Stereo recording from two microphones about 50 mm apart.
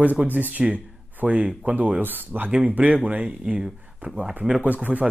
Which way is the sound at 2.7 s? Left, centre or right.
Right.